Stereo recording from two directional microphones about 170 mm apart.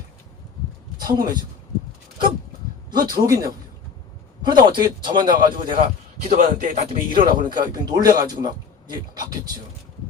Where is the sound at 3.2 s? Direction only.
20° right (ahead or behind).